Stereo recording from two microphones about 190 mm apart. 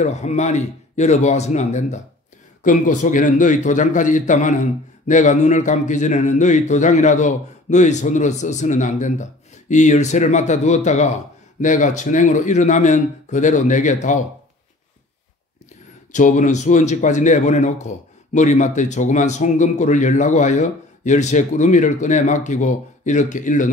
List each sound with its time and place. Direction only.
0.0 s speech: 35° left (ahead or behind)
16.1 s speech: 40° left (ahead or behind)